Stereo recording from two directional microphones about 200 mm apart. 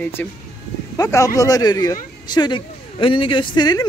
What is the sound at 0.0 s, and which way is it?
A man's voice, 10° left (ahead or behind).